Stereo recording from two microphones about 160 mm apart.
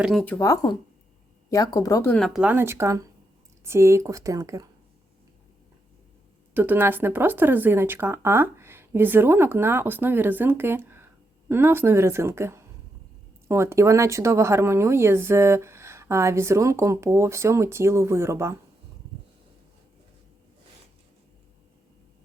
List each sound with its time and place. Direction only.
0.0 s speech: centre (ahead or behind)
0.3 s speech: 20° left (ahead or behind)
2.1 s speech: centre (ahead or behind); by 4.7 s 20° right (ahead or behind)
6.5 s speech: 10° right (ahead or behind)